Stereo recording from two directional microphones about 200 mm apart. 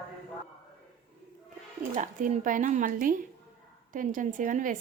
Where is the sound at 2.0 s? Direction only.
40° right (ahead or behind).